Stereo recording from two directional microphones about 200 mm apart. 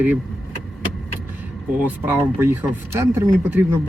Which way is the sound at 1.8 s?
10° right (ahead or behind).